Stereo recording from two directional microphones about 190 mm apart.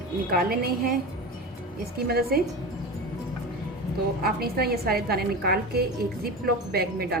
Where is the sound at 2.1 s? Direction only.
55° right (ahead or behind).